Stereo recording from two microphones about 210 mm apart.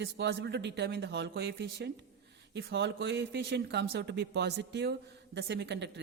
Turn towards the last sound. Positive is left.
turn(degrees=-55)  # may be behind; listen again after turning